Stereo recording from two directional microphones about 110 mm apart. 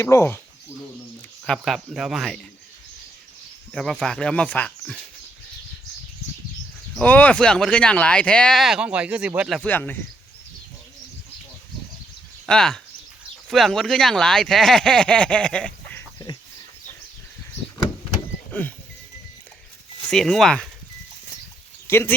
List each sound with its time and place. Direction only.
0.0 s speech: 25° left (ahead or behind)
1.5 s speech: centre (ahead or behind)
3.7 s speech: 5° left (ahead or behind)
7.0 s speech: 15° left (ahead or behind); by 9.5 s 10° right (ahead or behind)
9.6 s speech: 15° left (ahead or behind)
12.5 s speech: 5° left (ahead or behind)
18.5 s speech: 15° left (ahead or behind)
20.1 s speech: 5° left (ahead or behind)
21.8 s speech: 20° left (ahead or behind)